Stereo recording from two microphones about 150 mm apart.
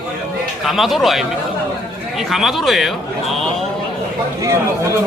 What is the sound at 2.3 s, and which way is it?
A man's voice, centre (ahead or behind).